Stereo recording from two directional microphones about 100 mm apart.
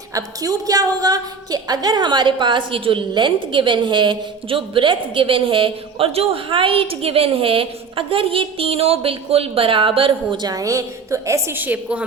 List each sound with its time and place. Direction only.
0.1 s a woman's voice: 35° right (ahead or behind); by 10.4 s 60° right (ahead or behind)
10.4 s a woman's voice: 35° right (ahead or behind); by 12.0 s 15° right (ahead or behind)